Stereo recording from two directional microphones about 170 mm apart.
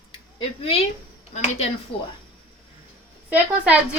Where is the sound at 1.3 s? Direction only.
40° left (ahead or behind).